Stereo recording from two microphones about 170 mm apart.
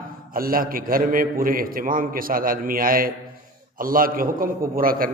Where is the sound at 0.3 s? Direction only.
55° right (ahead or behind).